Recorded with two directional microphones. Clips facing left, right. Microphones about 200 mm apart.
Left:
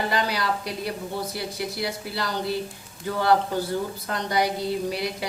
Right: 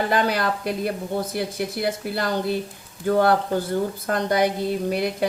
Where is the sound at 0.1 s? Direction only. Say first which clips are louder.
Right 4 dB; 50° right (ahead or behind).